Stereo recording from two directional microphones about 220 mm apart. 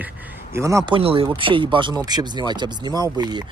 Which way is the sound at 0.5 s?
15° right (ahead or behind).